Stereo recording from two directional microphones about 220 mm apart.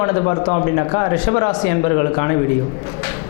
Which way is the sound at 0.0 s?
25° left (ahead or behind).